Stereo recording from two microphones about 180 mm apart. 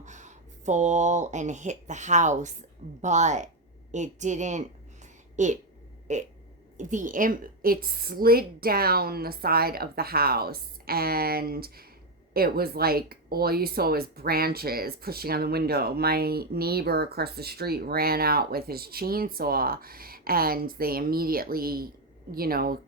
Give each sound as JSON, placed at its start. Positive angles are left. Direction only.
{"t": 0.0, "sound": "a woman's voice", "side_deg": -40}